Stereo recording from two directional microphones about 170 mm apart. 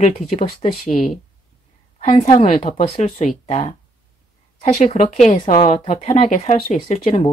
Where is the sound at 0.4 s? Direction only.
45° left (ahead or behind).